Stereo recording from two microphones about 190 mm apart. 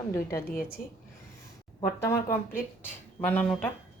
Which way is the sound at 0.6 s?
50° left (ahead or behind).